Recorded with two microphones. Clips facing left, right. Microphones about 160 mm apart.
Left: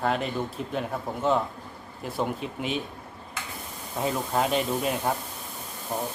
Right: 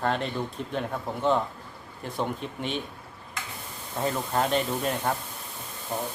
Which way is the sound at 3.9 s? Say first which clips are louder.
Left 1 dB; 5° left (ahead or behind).